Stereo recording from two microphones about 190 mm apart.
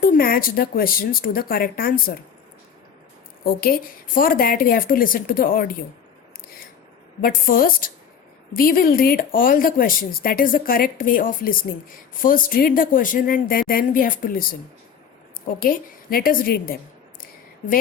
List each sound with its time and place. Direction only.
0.0 s speech: 50° left (ahead or behind)
3.4 s speech: 50° left (ahead or behind)
7.2 s speech: 50° left (ahead or behind)